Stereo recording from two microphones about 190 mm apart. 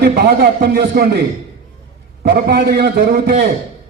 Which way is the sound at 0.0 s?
55° right (ahead or behind).